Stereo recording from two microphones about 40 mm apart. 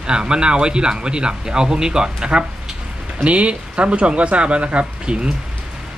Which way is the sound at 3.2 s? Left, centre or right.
Right.